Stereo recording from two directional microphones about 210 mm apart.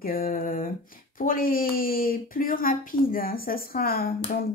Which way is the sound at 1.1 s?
40° left (ahead or behind).